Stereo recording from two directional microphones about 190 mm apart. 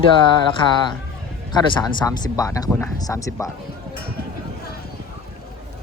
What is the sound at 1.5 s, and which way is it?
Speech, 20° left (ahead or behind).